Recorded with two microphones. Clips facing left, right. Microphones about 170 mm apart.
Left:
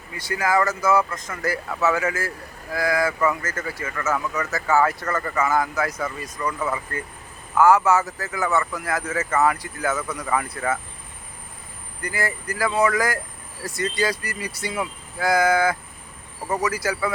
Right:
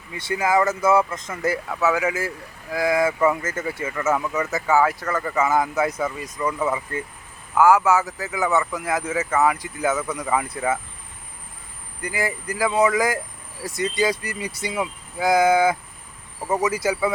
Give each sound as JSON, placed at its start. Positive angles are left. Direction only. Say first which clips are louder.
{"t": 0.1, "sound": "speech", "louder": "right 1 dB", "side_deg": -25}
{"t": 1.7, "sound": "speech", "louder": "left 1 dB", "side_deg": -10}
{"t": 12.0, "sound": "speech", "louder": "right 1 dB", "side_deg": -20}